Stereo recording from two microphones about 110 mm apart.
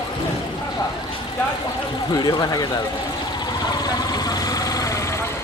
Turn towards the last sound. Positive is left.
turn(degrees=35)  # may be behind; listen again after turning